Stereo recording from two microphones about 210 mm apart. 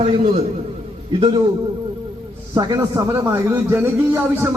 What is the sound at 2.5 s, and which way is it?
A man's voice, 15° right (ahead or behind).